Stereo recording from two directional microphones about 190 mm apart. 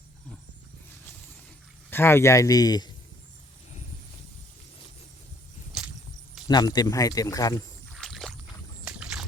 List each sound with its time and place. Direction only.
1.9 s a man's voice: 10° left (ahead or behind)
6.5 s speech: 20° left (ahead or behind)
7.9 s rowboat: centre (ahead or behind)